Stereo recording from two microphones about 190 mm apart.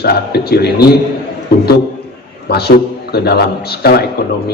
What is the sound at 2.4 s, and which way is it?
A man's voice, 55° left (ahead or behind).